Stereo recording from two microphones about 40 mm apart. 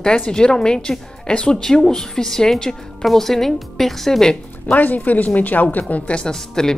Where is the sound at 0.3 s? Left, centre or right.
Centre.